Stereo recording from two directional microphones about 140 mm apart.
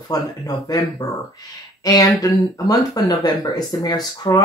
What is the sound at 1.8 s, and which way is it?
Speech, 25° left (ahead or behind).